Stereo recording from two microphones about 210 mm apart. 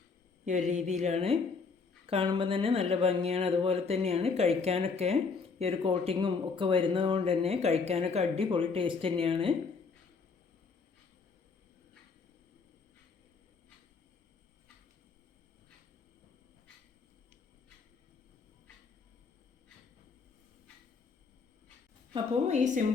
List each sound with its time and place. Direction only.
0.4 s a woman's voice: 35° right (ahead or behind)
22.1 s a woman's voice: 30° right (ahead or behind)